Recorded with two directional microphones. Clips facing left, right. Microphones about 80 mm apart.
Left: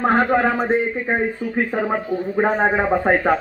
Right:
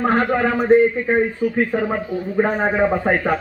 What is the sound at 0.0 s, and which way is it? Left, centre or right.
Speech, centre.